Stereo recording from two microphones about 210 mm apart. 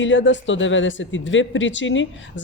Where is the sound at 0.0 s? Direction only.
60° left (ahead or behind).